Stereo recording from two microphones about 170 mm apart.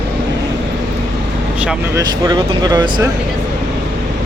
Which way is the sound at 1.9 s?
20° right (ahead or behind).